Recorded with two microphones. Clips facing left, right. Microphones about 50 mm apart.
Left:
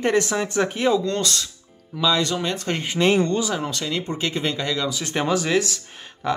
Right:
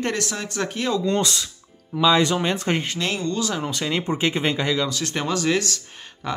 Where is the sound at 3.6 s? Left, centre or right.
Centre.